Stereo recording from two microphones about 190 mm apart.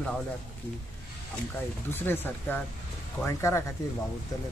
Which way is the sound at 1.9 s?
10° left (ahead or behind).